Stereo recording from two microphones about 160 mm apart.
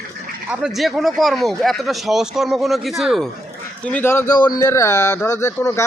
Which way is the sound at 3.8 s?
10° left (ahead or behind).